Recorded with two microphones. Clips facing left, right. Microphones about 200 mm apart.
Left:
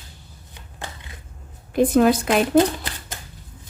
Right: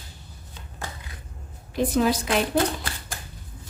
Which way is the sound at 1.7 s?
55° left (ahead or behind).